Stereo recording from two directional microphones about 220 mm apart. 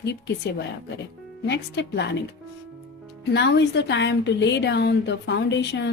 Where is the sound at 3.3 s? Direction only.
50° left (ahead or behind).